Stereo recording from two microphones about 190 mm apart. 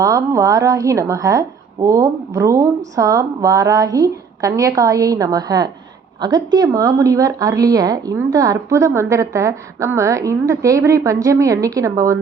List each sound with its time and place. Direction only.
0.0 s a woman's voice: 20° right (ahead or behind)